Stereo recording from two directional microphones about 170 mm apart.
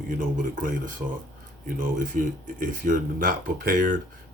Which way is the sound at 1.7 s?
50° right (ahead or behind).